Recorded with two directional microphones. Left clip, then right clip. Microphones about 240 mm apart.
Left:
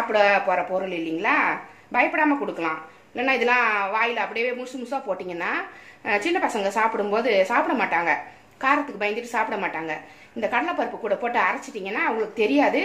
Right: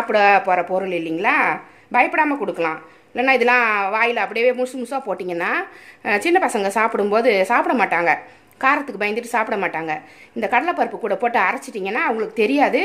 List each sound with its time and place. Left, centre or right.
0.1 s a woman's voice: right